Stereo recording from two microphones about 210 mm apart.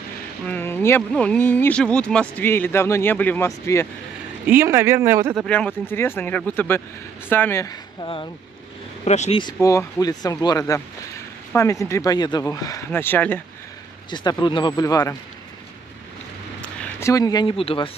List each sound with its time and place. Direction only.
0.5 s speech: 10° left (ahead or behind)
4.5 s speech: 10° right (ahead or behind)
5.4 s speech: 5° left (ahead or behind); by 9.4 s 30° left (ahead or behind)
9.4 s speech: 15° left (ahead or behind)
14.1 s speech: 20° left (ahead or behind)
16.8 s speech: 15° left (ahead or behind)